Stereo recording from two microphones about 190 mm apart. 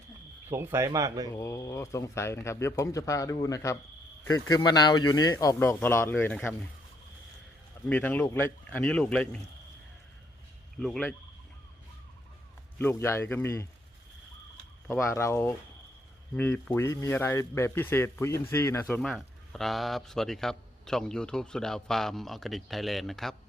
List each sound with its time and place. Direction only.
0.4 s speech: 10° right (ahead or behind)
1.3 s speech: 15° left (ahead or behind)
7.9 s speech: 10° left (ahead or behind)
10.8 s speech: 5° left (ahead or behind)
12.8 s speech: 10° left (ahead or behind)
14.8 s speech: 15° left (ahead or behind)